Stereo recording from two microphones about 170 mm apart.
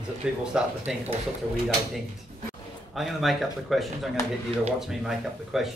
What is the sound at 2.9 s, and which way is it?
A man's voice, centre (ahead or behind).